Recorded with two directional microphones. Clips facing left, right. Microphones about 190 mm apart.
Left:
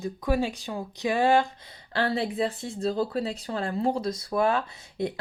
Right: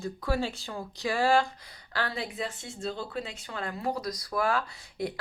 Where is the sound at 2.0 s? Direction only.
30° left (ahead or behind).